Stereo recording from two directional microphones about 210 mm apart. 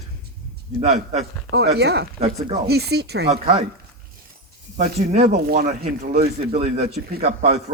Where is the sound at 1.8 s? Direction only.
50° right (ahead or behind).